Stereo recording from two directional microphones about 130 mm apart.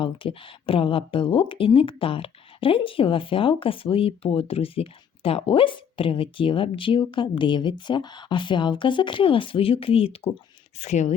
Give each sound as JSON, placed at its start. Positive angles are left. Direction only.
{"t": 0.0, "sound": "speech", "side_deg": 40}
{"t": 10.8, "sound": "speech", "side_deg": 65}